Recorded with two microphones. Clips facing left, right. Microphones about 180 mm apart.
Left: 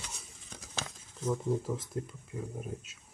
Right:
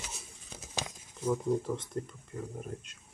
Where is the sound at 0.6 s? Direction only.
15° right (ahead or behind).